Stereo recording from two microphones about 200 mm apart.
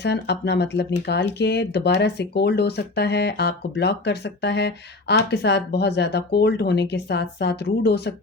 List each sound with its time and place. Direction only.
0.0 s speech: 55° left (ahead or behind)